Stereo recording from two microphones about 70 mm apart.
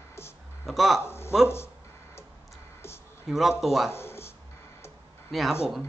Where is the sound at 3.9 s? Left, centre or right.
Left.